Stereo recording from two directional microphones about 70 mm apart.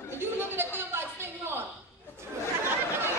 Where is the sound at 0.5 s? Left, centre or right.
Right.